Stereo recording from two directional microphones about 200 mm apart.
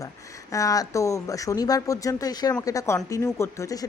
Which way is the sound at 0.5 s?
15° left (ahead or behind).